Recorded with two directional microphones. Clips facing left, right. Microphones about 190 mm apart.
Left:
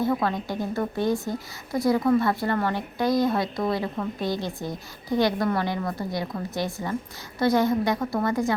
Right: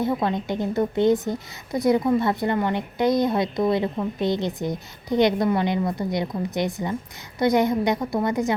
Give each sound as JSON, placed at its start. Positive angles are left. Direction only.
{"t": 0.0, "sound": "a woman's voice", "side_deg": -20}